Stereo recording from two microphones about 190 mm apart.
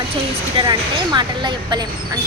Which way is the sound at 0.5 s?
25° right (ahead or behind).